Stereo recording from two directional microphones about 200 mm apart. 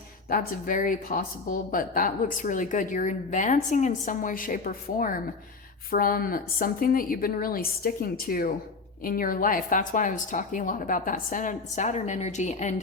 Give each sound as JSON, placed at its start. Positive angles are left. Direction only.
{"t": 0.3, "sound": "a woman's voice", "side_deg": 45}